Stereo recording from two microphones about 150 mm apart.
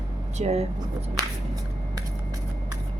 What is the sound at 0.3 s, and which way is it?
Speech, 45° right (ahead or behind).